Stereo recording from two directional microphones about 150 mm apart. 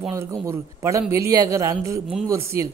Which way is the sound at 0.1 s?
20° right (ahead or behind).